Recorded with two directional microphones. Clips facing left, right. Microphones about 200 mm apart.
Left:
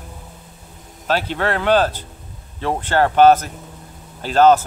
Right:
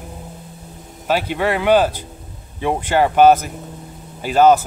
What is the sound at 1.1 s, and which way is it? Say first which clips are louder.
Speech: right 2 dB; 10° right (ahead or behind).